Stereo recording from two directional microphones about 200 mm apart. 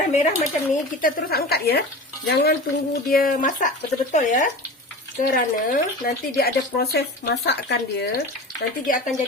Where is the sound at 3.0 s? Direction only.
45° left (ahead or behind).